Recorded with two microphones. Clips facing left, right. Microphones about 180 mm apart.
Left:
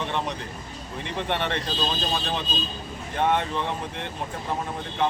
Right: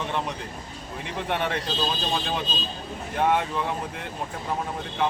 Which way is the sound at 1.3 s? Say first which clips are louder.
Right 1 dB; 5° right (ahead or behind).